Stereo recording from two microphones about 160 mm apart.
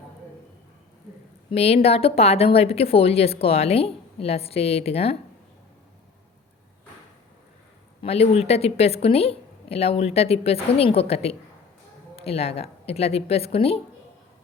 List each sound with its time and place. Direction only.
1.5 s speech: 40° left (ahead or behind)
8.0 s speech: 40° left (ahead or behind)